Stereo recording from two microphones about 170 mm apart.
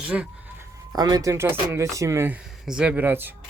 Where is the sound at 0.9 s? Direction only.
25° right (ahead or behind).